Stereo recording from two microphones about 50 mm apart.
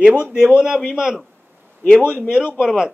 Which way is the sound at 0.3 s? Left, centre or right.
Centre.